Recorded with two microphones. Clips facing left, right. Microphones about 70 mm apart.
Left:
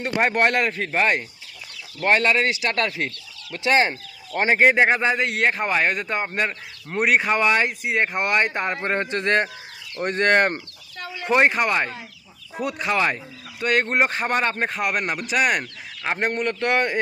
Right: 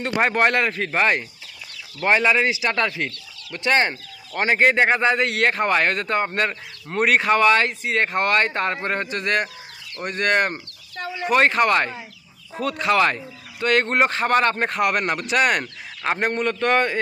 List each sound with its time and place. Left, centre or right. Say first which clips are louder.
0.0 s speech: right 1 dB; centre
2.9 s speech: even; centre; by 10.6 s left
11.3 s speech: even; centre
11.5 s speech: right 3 dB; centre